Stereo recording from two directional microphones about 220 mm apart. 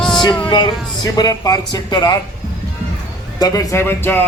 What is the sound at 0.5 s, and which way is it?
Speech, 20° left (ahead or behind).